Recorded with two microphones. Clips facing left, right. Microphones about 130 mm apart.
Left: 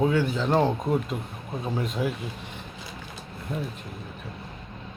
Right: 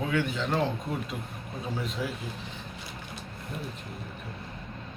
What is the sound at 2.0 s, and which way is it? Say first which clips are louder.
Speech: left 6 dB; 50° left (ahead or behind).